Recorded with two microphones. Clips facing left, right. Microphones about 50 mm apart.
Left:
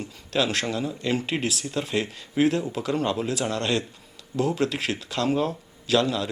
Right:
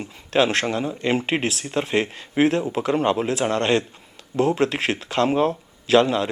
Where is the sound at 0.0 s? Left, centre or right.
Right.